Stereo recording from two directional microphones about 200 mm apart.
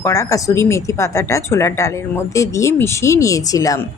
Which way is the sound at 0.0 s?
15° left (ahead or behind).